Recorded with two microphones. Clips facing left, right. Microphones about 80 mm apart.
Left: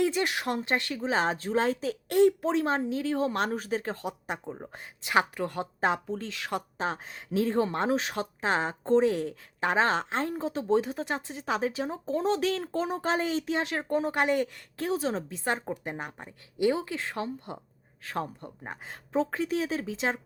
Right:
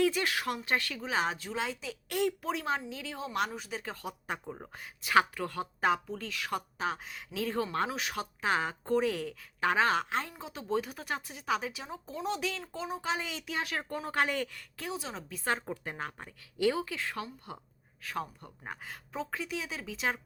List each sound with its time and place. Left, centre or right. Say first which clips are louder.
0.0 s speech: left 2 dB; left
2.1 s speech: left 9 dB; left
4.0 s speech: left 4 dB; left
14.8 s speech: left 10 dB; left
15.3 s speech: left 3 dB; left
19.2 s speech: left 7 dB; left